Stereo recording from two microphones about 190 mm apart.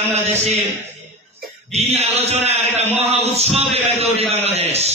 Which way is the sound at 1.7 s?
35° right (ahead or behind).